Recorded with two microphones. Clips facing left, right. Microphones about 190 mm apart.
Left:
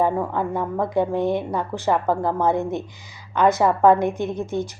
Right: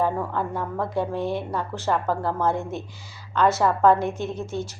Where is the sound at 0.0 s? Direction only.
15° left (ahead or behind).